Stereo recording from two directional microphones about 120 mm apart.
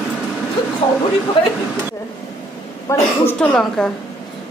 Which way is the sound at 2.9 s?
15° left (ahead or behind).